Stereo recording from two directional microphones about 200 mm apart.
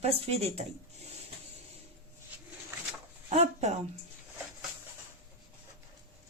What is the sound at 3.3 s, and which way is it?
Speech, 35° right (ahead or behind).